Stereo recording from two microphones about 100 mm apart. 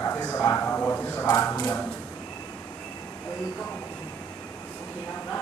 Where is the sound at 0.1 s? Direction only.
15° left (ahead or behind).